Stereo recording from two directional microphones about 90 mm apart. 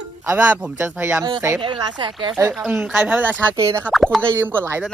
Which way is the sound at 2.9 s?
20° right (ahead or behind).